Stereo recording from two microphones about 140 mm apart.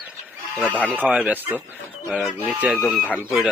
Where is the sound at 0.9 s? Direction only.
10° right (ahead or behind).